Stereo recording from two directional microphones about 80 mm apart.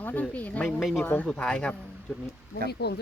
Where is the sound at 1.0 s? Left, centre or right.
Left.